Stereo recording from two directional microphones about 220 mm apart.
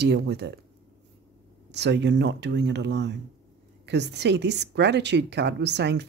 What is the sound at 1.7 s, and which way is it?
A woman's voice, 50° right (ahead or behind).